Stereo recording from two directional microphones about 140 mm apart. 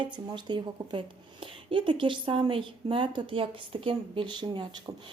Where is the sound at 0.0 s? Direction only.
35° right (ahead or behind).